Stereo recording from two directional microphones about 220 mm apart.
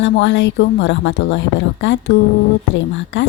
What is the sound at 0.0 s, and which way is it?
Speech, 55° left (ahead or behind).